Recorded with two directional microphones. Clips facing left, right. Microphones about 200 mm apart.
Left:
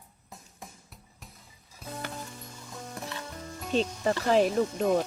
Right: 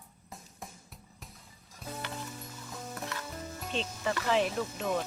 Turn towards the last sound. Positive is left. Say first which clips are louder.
# left 7 dB
turn(degrees=45)  # may be behind; listen again after turning